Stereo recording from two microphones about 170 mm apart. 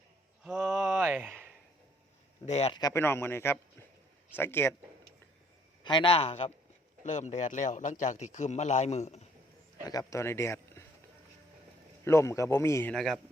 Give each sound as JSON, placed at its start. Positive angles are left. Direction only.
{"t": 0.4, "sound": "a sound", "side_deg": -5}
{"t": 2.5, "sound": "a man's voice", "side_deg": 40}
{"t": 2.7, "sound": "a man's voice", "side_deg": 20}
{"t": 5.8, "sound": "a man's voice", "side_deg": 30}
{"t": 9.8, "sound": "speech", "side_deg": 20}
{"t": 12.0, "sound": "a man's voice", "side_deg": 15}
{"t": 12.9, "sound": "speech", "side_deg": 0}